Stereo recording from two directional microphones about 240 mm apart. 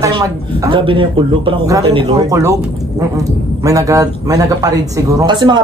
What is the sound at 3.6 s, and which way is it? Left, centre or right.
Speech, centre.